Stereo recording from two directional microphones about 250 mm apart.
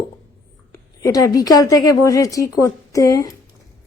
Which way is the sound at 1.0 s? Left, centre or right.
Centre.